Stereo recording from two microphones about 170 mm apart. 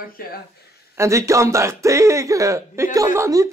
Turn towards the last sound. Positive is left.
turn(degrees=-20)  # may be behind; listen again after turning